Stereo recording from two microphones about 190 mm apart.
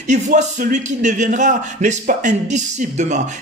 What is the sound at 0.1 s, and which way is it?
Speech, 40° right (ahead or behind).